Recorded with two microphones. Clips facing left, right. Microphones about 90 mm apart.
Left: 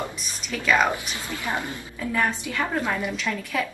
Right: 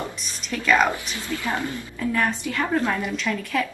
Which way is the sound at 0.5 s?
10° left (ahead or behind).